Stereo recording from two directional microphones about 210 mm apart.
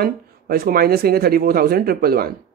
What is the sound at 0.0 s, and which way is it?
Speech, 45° right (ahead or behind).